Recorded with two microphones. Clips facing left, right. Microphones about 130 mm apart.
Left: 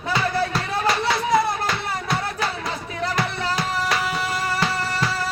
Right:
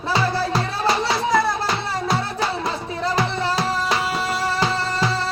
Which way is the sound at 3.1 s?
30° right (ahead or behind).